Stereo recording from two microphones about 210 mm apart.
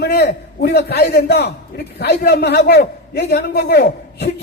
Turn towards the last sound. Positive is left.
turn(degrees=50)  # may be behind; listen again after turning